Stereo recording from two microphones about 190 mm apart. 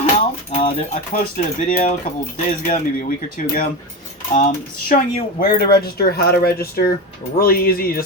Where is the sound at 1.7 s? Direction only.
40° left (ahead or behind).